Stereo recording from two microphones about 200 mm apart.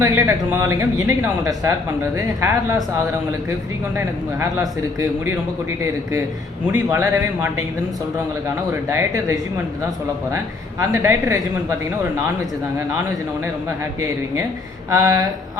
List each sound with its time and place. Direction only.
0.0 s speech: 15° right (ahead or behind)
3.9 s speech: 15° right (ahead or behind)
6.7 s speech: 10° right (ahead or behind)
8.7 s speech: 15° right (ahead or behind)
14.8 s speech: 20° right (ahead or behind)